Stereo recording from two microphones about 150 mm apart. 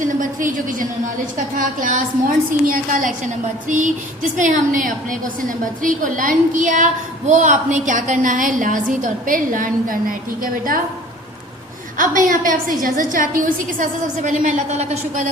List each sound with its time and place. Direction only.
0.2 s a woman's voice: 65° right (ahead or behind)
11.9 s a woman's voice: 65° right (ahead or behind)